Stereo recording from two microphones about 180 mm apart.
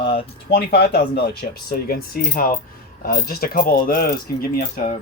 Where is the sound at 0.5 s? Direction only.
60° left (ahead or behind).